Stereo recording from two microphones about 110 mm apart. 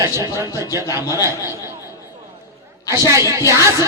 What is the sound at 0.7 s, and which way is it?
Speech, 30° left (ahead or behind).